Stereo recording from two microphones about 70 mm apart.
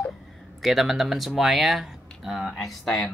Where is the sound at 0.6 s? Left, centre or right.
Centre.